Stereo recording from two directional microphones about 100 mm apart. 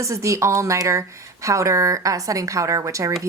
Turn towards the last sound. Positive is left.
turn(degrees=-35)  # may be behind; listen again after turning